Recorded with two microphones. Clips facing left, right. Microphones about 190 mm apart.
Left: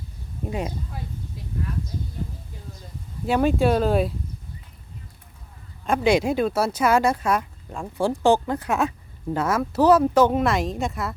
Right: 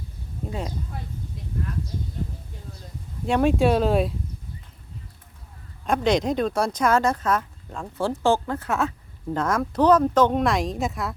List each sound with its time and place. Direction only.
0.4 s speech: 15° left (ahead or behind)
3.2 s speech: centre (ahead or behind)
5.8 s speech: 5° left (ahead or behind)